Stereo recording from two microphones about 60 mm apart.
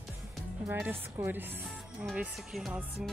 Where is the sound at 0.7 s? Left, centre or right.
Right.